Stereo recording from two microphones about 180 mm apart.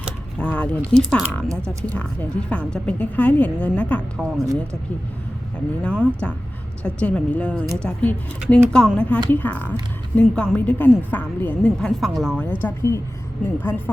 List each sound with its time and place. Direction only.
0.3 s a sound: 5° left (ahead or behind)
0.9 s speech: 5° left (ahead or behind)
2.5 s a woman's voice: 5° left (ahead or behind)
4.2 s speech: 15° right (ahead or behind)
5.8 s a woman's voice: 5° left (ahead or behind)